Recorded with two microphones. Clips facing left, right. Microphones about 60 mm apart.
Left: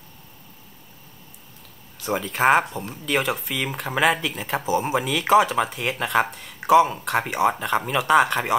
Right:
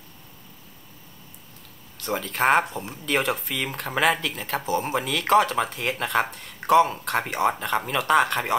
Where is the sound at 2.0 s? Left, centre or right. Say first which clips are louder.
Left 2 dB; centre.